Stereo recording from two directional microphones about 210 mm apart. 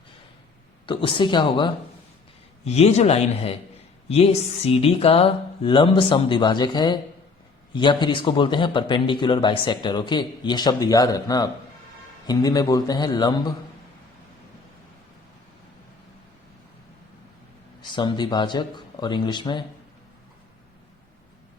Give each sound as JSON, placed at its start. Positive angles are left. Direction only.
{"t": 0.9, "sound": "a man's voice", "side_deg": 25}
{"t": 17.9, "sound": "a man's voice", "side_deg": 20}